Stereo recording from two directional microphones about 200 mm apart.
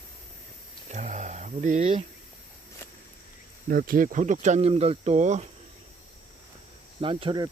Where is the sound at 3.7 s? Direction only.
45° right (ahead or behind).